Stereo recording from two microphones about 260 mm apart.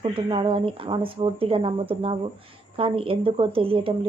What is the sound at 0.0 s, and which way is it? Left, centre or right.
A woman's voice, centre.